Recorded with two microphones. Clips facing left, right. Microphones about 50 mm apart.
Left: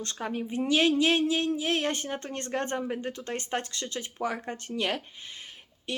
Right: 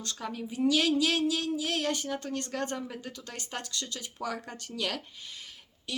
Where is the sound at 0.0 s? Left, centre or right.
Left.